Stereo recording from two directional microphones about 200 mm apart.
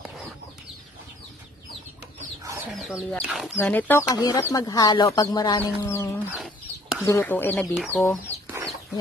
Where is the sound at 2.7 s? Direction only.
Centre (ahead or behind).